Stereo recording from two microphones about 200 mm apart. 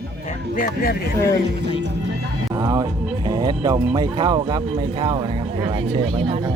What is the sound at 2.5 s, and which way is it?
Music, 20° right (ahead or behind).